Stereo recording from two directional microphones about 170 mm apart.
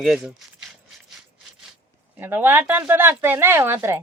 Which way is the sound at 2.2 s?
10° right (ahead or behind).